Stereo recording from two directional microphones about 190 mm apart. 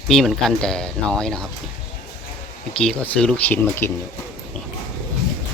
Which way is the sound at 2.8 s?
5° left (ahead or behind).